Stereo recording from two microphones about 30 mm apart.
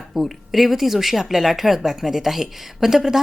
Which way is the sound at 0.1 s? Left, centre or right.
Centre.